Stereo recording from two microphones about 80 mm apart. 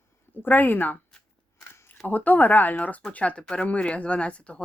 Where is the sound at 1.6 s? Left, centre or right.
Left.